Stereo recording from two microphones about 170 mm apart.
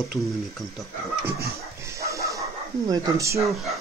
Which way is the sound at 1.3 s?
65° right (ahead or behind).